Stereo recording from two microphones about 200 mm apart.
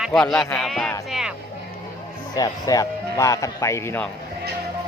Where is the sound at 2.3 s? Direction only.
20° left (ahead or behind).